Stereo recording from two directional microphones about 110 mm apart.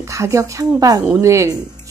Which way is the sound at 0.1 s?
25° right (ahead or behind).